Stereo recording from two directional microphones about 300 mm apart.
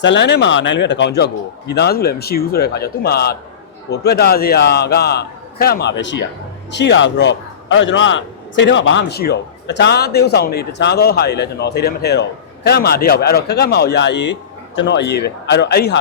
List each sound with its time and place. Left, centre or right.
0.0 s a man's voice: left